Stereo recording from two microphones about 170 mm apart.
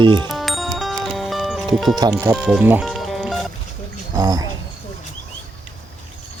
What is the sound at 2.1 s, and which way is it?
Speech, 5° right (ahead or behind).